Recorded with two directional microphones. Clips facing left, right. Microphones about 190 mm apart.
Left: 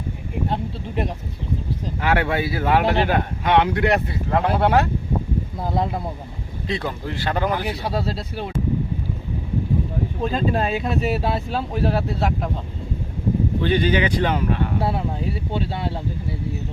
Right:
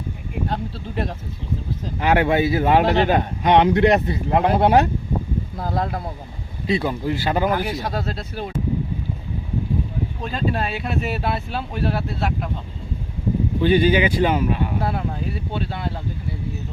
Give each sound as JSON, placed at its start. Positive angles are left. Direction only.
{"t": 2.0, "sound": "speech", "side_deg": -20}
{"t": 5.5, "sound": "speech", "side_deg": 20}
{"t": 6.7, "sound": "speech", "side_deg": -10}
{"t": 7.5, "sound": "speech", "side_deg": 20}
{"t": 7.9, "sound": "speech", "side_deg": 30}
{"t": 10.2, "sound": "speech", "side_deg": 40}
{"t": 13.6, "sound": "speech", "side_deg": -10}
{"t": 14.8, "sound": "speech", "side_deg": 30}